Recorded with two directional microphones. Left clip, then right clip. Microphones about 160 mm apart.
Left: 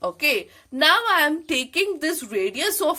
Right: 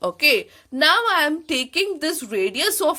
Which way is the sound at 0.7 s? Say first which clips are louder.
Right 1 dB; 20° right (ahead or behind).